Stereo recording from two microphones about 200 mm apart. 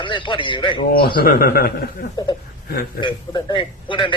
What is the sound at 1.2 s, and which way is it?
Speech, 45° left (ahead or behind).